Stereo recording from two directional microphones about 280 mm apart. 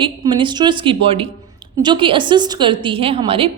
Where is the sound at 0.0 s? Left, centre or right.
Centre.